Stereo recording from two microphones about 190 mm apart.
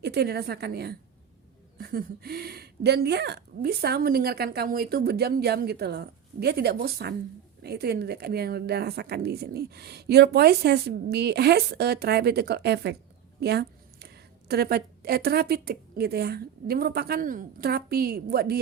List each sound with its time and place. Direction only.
0.0 s a woman's voice: 60° right (ahead or behind)